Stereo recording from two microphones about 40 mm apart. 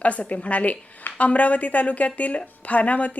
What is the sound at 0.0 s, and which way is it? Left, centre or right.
Speech, left.